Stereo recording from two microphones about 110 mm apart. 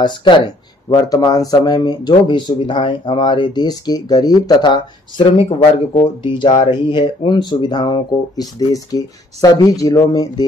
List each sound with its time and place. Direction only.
0.0 s speech: 45° left (ahead or behind)
0.8 s speech: 35° left (ahead or behind)